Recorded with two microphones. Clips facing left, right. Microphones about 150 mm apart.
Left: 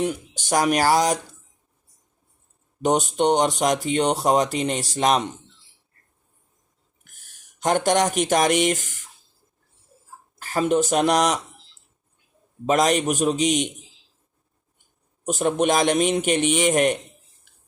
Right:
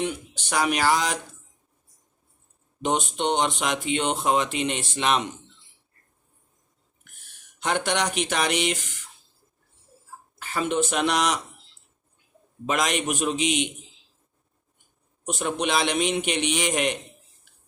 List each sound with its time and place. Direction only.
0.0 s speech: 40° left (ahead or behind)
2.8 s speech: 40° left (ahead or behind)
7.2 s speech: 45° left (ahead or behind)
10.4 s speech: 40° left (ahead or behind)
12.6 s speech: 40° left (ahead or behind)
15.2 s a man's voice: 40° left (ahead or behind)